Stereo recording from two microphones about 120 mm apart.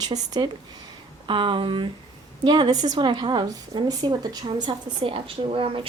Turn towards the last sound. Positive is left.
turn(degrees=-50)  # may be behind; listen again after turning